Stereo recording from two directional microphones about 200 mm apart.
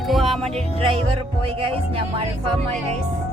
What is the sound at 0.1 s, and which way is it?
Music, centre (ahead or behind).